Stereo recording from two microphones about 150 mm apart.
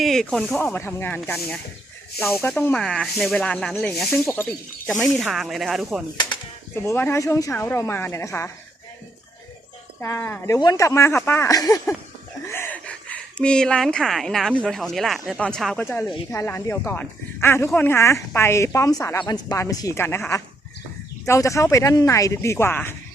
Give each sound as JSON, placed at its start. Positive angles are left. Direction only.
{"t": 0.0, "sound": "speech", "side_deg": 5}
{"t": 0.6, "sound": "speech", "side_deg": 15}
{"t": 2.8, "sound": "speech", "side_deg": 0}
{"t": 6.1, "sound": "speech", "side_deg": 30}
{"t": 6.7, "sound": "speech", "side_deg": 15}
{"t": 10.0, "sound": "speech", "side_deg": 15}
{"t": 16.3, "sound": "speech", "side_deg": 15}